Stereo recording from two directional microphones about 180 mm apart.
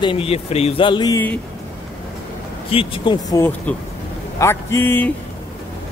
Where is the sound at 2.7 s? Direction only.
30° left (ahead or behind); by 5.1 s 10° left (ahead or behind).